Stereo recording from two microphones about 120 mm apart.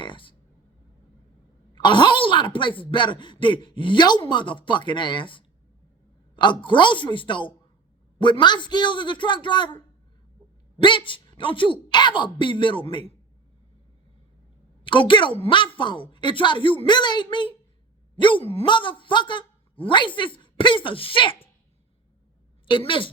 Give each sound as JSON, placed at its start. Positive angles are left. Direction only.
{"t": 0.0, "sound": "a sound", "side_deg": 45}
{"t": 1.7, "sound": "a woman's voice", "side_deg": 40}
{"t": 14.8, "sound": "a woman's voice", "side_deg": 45}
{"t": 22.6, "sound": "a woman's voice", "side_deg": 45}